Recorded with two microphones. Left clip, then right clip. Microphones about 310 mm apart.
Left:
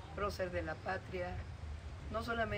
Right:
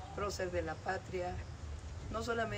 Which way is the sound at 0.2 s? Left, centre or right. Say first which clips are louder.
Right 1 dB; centre.